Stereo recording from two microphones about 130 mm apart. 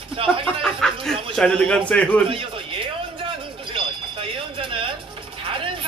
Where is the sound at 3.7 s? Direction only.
45° right (ahead or behind).